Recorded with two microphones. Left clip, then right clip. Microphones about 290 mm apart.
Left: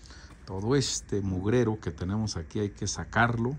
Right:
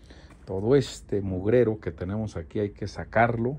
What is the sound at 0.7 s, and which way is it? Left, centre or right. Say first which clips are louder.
Speech: right 5 dB; centre.